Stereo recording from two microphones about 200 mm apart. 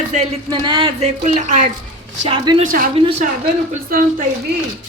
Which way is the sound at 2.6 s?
45° right (ahead or behind).